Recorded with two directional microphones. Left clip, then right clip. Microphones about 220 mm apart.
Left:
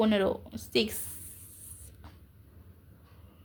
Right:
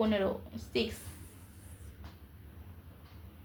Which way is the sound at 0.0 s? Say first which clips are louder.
Left 4 dB; 50° left (ahead or behind).